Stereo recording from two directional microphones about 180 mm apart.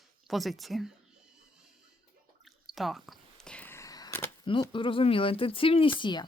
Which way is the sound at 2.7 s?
Centre (ahead or behind).